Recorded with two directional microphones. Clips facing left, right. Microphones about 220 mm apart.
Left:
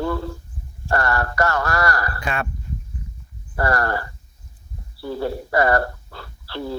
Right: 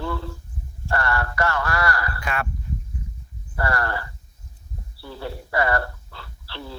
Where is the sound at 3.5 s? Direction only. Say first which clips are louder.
Left 4 dB; 40° left (ahead or behind).